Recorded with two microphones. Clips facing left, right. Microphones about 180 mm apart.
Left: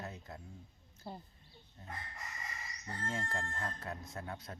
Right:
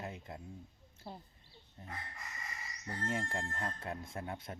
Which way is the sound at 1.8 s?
20° right (ahead or behind).